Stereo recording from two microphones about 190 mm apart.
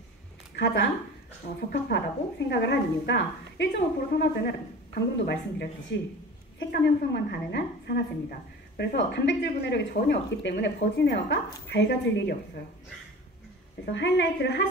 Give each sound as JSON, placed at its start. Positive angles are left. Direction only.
{"t": 0.6, "sound": "a woman's voice", "side_deg": 65}
{"t": 13.8, "sound": "a woman's voice", "side_deg": 65}